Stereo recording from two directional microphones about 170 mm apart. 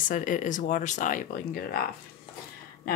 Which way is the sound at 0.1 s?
50° left (ahead or behind).